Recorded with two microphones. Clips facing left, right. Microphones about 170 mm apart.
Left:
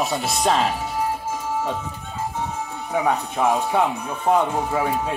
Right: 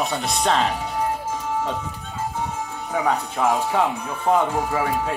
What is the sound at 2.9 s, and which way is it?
Speech, 10° left (ahead or behind).